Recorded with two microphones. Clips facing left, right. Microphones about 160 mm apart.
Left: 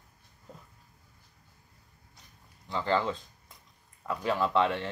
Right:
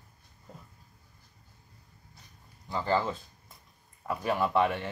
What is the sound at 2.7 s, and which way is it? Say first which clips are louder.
Speech: even; 5° right (ahead or behind).